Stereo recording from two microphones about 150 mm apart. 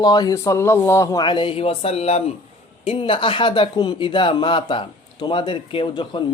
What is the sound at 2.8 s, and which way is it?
Speech, 40° left (ahead or behind).